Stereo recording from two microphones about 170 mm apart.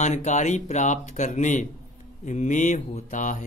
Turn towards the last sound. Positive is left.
turn(degrees=50)  # may be behind; listen again after turning